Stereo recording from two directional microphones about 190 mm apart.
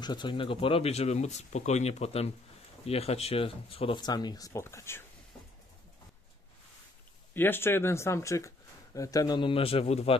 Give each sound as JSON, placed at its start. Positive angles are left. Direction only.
{"t": 0.0, "sound": "speech", "side_deg": 25}
{"t": 7.3, "sound": "speech", "side_deg": 10}